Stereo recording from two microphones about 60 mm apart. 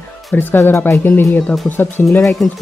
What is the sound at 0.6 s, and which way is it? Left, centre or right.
Speech, left.